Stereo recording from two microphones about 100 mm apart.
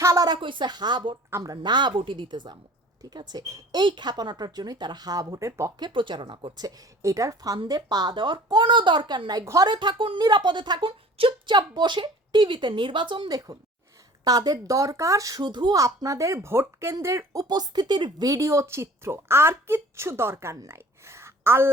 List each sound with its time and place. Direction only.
0.0 s a sound: 30° right (ahead or behind)
0.3 s speech: 55° right (ahead or behind); by 5.7 s 30° right (ahead or behind)
5.8 s speech: 55° right (ahead or behind)
6.7 s speech: 35° right (ahead or behind)
9.4 s speech: 30° right (ahead or behind)
9.6 s speech: 50° right (ahead or behind)
11.5 s speech: 45° right (ahead or behind)
14.3 s speech: 40° right (ahead or behind)
17.4 s speech: 45° right (ahead or behind)
18.3 s a woman's voice: 30° right (ahead or behind)